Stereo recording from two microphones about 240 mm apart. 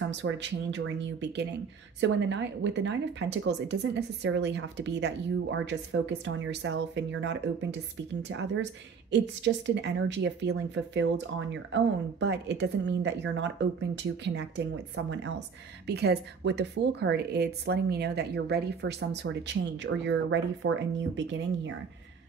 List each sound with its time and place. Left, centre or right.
0.1 s a woman's voice: right